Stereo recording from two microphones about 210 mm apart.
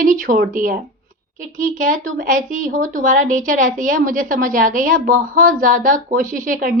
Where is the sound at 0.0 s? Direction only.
40° right (ahead or behind).